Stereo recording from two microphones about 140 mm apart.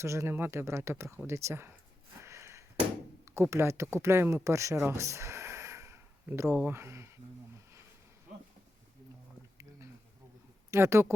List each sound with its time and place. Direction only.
0.0 s speech: 20° right (ahead or behind)
2.2 s a sound: 20° right (ahead or behind)
3.2 s speech: 20° right (ahead or behind)
4.9 s a sound: 20° right (ahead or behind)
6.6 s speech: 15° right (ahead or behind)
10.7 s speech: 20° right (ahead or behind)